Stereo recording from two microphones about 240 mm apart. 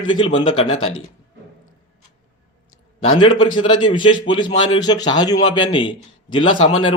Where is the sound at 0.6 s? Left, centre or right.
Left.